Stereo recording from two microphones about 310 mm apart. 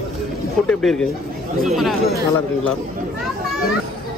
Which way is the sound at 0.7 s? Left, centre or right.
Centre.